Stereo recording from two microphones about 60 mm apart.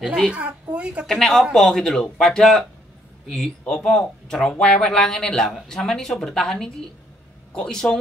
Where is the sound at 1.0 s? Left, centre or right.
Centre.